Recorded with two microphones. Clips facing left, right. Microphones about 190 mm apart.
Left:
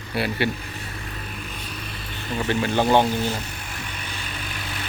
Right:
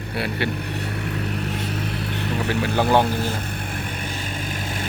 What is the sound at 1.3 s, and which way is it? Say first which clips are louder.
Vehicle: right 9 dB; 75° right (ahead or behind).